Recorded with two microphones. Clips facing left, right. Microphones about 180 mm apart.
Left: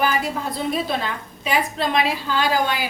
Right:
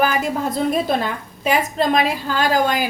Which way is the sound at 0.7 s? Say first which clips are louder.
Right 4 dB; 50° right (ahead or behind).